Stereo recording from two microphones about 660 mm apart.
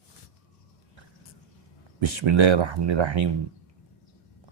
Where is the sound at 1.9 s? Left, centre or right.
Right.